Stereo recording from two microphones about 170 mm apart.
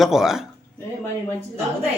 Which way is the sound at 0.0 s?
Centre (ahead or behind).